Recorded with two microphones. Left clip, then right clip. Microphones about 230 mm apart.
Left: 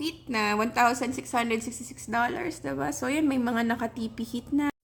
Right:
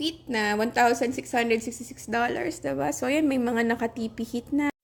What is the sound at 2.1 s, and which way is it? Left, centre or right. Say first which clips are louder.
Speech: right 1 dB; left.